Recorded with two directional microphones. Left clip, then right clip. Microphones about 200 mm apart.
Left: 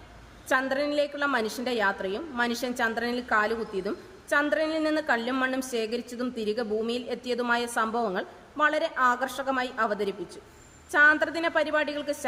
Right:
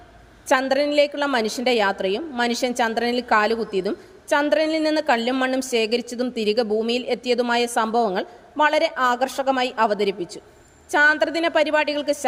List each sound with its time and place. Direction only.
0.4 s a woman's voice: 30° right (ahead or behind)